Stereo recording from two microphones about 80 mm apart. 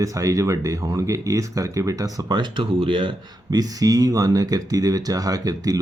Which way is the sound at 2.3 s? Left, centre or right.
Right.